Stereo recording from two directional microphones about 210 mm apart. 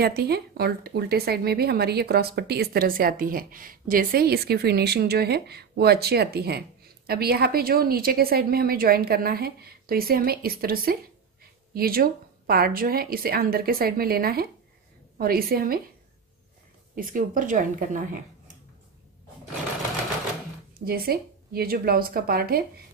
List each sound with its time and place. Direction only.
0.0 s speech: 50° right (ahead or behind)
16.9 s a woman's voice: 40° right (ahead or behind)
20.8 s speech: 45° right (ahead or behind)